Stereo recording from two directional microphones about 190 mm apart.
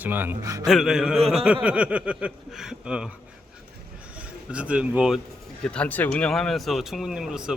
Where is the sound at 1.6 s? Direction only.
5° right (ahead or behind).